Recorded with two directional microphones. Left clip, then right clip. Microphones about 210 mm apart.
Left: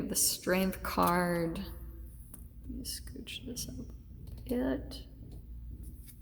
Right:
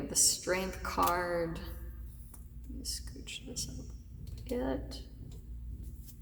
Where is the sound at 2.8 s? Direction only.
30° left (ahead or behind).